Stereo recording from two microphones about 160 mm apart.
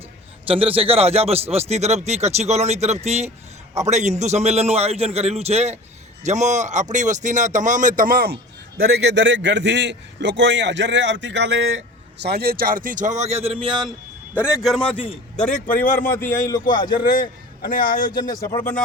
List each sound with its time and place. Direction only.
0.4 s a man's voice: 35° right (ahead or behind); by 8.4 s 70° right (ahead or behind)
8.9 s a man's voice: 90° right; by 13.8 s 30° right (ahead or behind)
14.3 s a man's voice: 5° right (ahead or behind)
14.9 s a man's voice: 35° left (ahead or behind)
15.4 s a man's voice: 5° left (ahead or behind)
16.5 s speech: 30° left (ahead or behind)
17.0 s a man's voice: 65° left (ahead or behind)
18.1 s speech: 25° left (ahead or behind)